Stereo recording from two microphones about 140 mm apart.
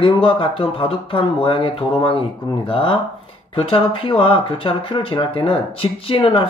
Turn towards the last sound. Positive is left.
turn(degrees=40)  # may be behind; listen again after turning